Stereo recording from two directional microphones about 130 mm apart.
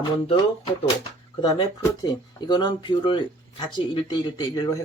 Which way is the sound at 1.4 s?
30° left (ahead or behind).